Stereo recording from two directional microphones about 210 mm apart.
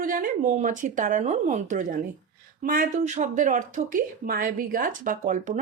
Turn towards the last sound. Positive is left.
turn(degrees=-35)  # may be behind; listen again after turning